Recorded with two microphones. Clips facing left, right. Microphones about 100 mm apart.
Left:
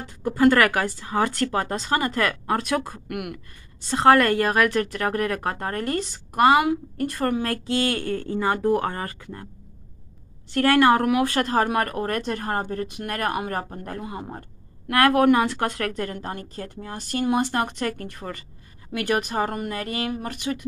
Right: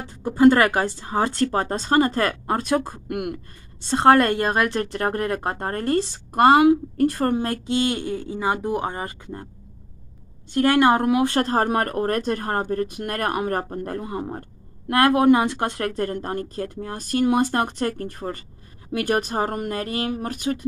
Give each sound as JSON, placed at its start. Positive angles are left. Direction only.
{"t": 0.2, "sound": "a woman's voice", "side_deg": -25}
{"t": 7.5, "sound": "speech", "side_deg": -20}
{"t": 10.5, "sound": "speech", "side_deg": -20}
{"t": 14.9, "sound": "speech", "side_deg": -25}